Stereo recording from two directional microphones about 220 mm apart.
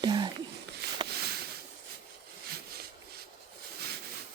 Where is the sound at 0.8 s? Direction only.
50° right (ahead or behind).